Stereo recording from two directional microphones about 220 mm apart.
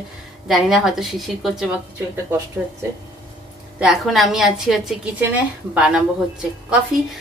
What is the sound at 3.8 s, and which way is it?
A woman's voice, centre (ahead or behind).